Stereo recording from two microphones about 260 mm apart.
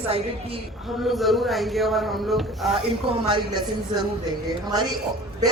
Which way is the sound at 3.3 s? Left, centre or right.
Centre.